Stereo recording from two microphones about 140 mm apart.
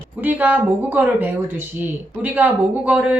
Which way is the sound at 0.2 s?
10° right (ahead or behind).